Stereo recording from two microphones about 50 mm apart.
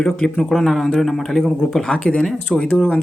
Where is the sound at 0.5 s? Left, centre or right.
Centre.